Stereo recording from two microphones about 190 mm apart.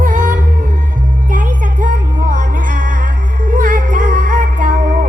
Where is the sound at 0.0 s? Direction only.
45° right (ahead or behind).